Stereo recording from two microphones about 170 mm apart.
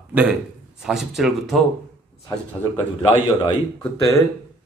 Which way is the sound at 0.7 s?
5° right (ahead or behind).